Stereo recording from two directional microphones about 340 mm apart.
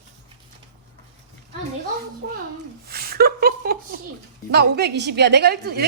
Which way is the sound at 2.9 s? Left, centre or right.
Right.